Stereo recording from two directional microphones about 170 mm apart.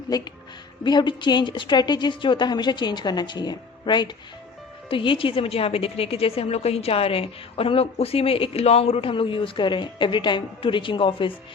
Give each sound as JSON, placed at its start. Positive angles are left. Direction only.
{"t": 0.1, "sound": "a woman's voice", "side_deg": 25}